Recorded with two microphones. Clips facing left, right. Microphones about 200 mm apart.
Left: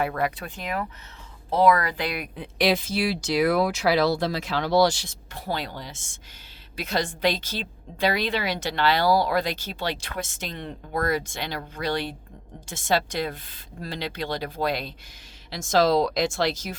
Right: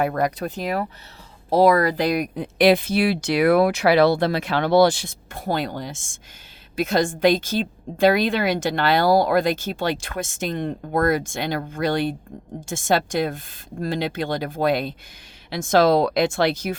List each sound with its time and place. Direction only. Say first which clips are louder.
0.0 s a woman's voice: right 4 dB; 40° right (ahead or behind); by 16.7 s 60° right (ahead or behind)